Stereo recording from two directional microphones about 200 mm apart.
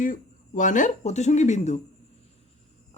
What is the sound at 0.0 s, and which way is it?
Speech, 40° left (ahead or behind).